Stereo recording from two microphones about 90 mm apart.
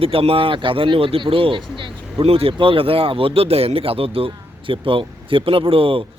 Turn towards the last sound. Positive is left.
turn(degrees=-90)